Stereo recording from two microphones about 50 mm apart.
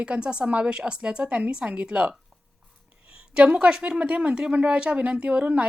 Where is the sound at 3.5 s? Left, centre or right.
Centre.